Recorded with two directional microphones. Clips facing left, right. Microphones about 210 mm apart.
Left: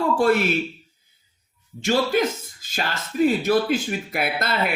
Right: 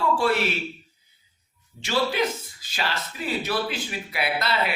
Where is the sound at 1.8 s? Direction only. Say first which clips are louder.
Left 4 dB; 45° left (ahead or behind).